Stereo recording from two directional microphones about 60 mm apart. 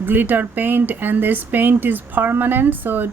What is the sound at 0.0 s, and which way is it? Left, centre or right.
Speech, right.